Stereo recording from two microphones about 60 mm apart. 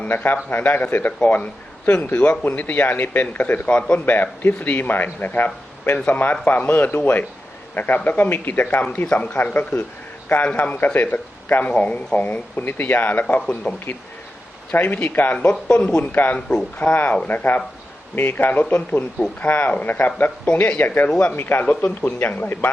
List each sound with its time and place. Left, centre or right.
0.1 s speech: left
13.7 s speech: centre
14.7 s speech: left
15.4 s speech: centre
16.1 s speech: left
20.7 s speech: left